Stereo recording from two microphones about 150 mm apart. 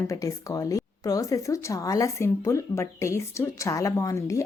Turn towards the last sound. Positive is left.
turn(degrees=20)  # may be behind; listen again after turning